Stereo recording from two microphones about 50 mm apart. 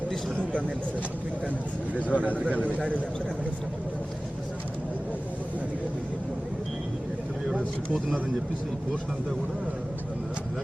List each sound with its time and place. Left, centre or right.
2.0 s a man's voice: left
2.6 s a man's voice: right